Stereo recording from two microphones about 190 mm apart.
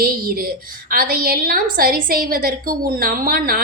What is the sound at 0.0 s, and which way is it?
A woman's voice, 50° right (ahead or behind).